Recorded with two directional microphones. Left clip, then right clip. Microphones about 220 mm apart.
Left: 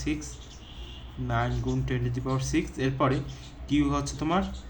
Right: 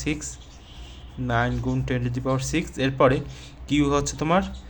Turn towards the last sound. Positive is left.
turn(degrees=-40)  # may be behind; listen again after turning